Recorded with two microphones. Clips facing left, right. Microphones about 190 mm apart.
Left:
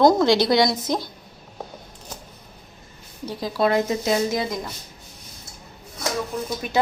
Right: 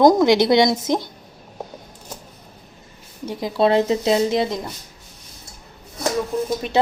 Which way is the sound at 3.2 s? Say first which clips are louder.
Right 3 dB; 20° right (ahead or behind).